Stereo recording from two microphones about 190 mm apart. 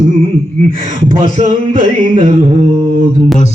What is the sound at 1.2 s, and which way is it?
Music, 40° right (ahead or behind).